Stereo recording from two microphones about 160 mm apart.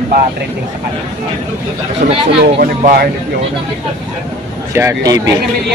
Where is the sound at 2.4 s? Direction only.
70° right (ahead or behind).